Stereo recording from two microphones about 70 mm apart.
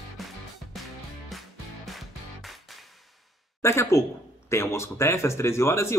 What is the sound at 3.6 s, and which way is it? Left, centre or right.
Speech, left.